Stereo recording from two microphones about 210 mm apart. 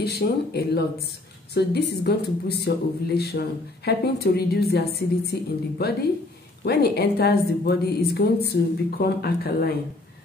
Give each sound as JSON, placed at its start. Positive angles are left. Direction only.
{"t": 0.0, "sound": "a woman's voice", "side_deg": 50}